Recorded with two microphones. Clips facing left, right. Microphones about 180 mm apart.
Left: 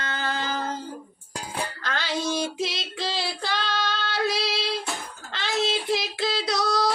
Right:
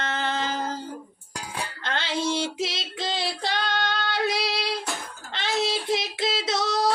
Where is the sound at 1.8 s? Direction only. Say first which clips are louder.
Right 2 dB; 25° right (ahead or behind).